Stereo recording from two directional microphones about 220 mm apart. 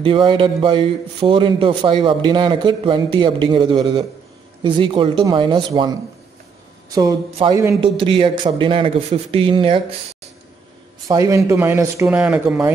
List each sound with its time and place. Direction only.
0.0 s a man's voice: 20° right (ahead or behind)
11.1 s speech: 15° right (ahead or behind)